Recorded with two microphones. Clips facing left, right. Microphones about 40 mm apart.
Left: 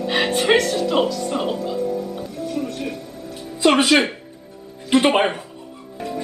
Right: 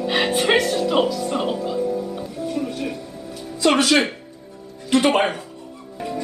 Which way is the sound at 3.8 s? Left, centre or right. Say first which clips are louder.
Left 1 dB; centre.